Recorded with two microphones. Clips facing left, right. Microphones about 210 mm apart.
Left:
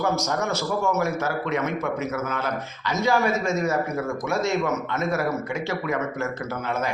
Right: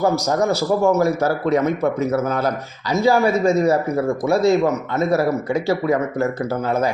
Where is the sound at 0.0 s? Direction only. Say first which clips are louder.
Right 6 dB; 35° right (ahead or behind).